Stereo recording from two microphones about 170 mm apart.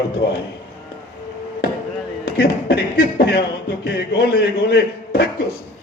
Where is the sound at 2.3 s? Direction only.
70° left (ahead or behind).